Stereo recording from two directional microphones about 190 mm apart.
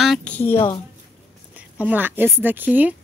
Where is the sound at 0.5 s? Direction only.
25° left (ahead or behind).